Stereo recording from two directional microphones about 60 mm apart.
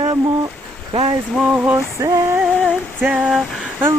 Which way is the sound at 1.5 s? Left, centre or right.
Right.